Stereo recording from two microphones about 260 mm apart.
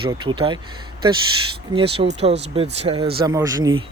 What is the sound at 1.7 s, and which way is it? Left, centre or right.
Speech, right.